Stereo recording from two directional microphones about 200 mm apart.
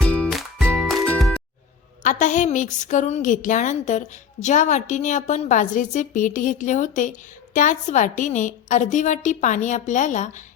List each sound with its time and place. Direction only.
0.0 s music: 5° left (ahead or behind)
2.0 s a woman's voice: 40° left (ahead or behind)